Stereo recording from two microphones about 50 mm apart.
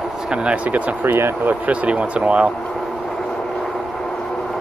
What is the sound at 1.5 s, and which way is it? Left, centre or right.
Speech, right.